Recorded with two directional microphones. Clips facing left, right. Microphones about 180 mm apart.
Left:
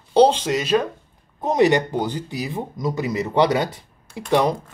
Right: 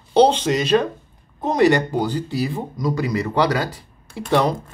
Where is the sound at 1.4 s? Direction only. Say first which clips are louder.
Right 1 dB; 20° left (ahead or behind).